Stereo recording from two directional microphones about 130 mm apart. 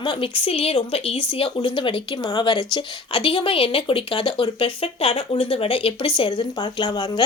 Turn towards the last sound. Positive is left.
turn(degrees=35)  # may be behind; listen again after turning